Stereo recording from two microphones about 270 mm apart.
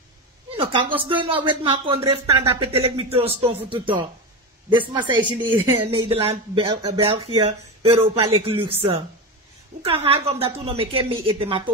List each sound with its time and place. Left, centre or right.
0.6 s speech: centre